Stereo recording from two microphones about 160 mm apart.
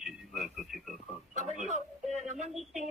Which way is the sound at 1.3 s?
50° right (ahead or behind).